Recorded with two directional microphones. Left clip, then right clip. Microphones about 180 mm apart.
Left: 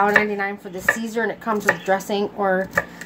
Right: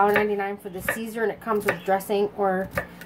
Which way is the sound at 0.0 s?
30° left (ahead or behind).